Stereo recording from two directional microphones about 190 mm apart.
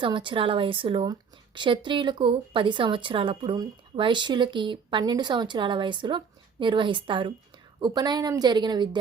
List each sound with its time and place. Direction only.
0.0 s speech: 25° right (ahead or behind)